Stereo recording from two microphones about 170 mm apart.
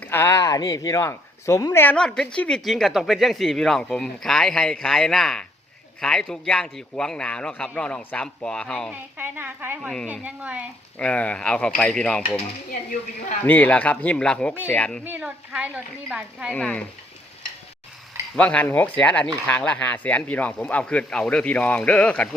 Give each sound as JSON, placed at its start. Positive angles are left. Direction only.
{"t": 0.0, "sound": "speech", "side_deg": 15}
{"t": 8.9, "sound": "speech", "side_deg": -10}
{"t": 10.9, "sound": "speech", "side_deg": 5}
{"t": 12.9, "sound": "a woman's voice", "side_deg": 50}
{"t": 13.4, "sound": "speech", "side_deg": 10}
{"t": 15.0, "sound": "speech", "side_deg": -10}
{"t": 16.5, "sound": "speech", "side_deg": 5}
{"t": 18.3, "sound": "speech", "side_deg": 10}